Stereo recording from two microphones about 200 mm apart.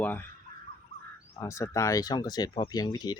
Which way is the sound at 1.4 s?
15° left (ahead or behind).